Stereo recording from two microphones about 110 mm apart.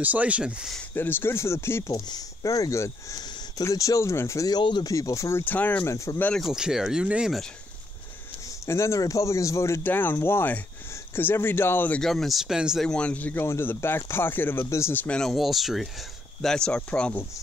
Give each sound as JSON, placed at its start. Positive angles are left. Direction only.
{"t": 0.0, "sound": "speech", "side_deg": -15}
{"t": 0.9, "sound": "speech", "side_deg": 20}
{"t": 1.9, "sound": "speech", "side_deg": 35}
{"t": 4.9, "sound": "speech", "side_deg": 30}
{"t": 5.4, "sound": "speech", "side_deg": 15}
{"t": 5.9, "sound": "speech", "side_deg": 25}
{"t": 6.3, "sound": "speech", "side_deg": -5}
{"t": 8.6, "sound": "speech", "side_deg": 25}
{"t": 12.0, "sound": "speech", "side_deg": 5}
{"t": 12.8, "sound": "speech", "side_deg": 10}
{"t": 15.0, "sound": "speech", "side_deg": 5}